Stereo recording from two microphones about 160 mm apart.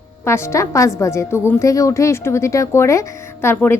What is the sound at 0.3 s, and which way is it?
A woman's voice, 15° left (ahead or behind).